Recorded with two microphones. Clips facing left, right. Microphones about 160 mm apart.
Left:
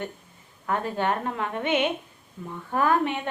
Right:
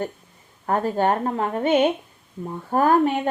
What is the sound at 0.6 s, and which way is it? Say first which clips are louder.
A woman's voice: right 5 dB; 40° right (ahead or behind).